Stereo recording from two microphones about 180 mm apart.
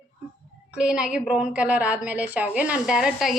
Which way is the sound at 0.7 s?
5° right (ahead or behind).